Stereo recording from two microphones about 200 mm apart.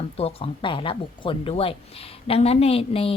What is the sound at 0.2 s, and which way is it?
A woman's voice, 30° left (ahead or behind).